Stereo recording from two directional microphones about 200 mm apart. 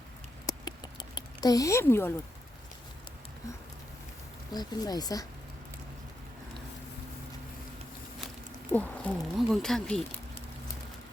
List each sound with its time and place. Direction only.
0.4 s a sound: 20° left (ahead or behind)
4.5 s speech: 20° left (ahead or behind)
8.7 s speech: 5° left (ahead or behind)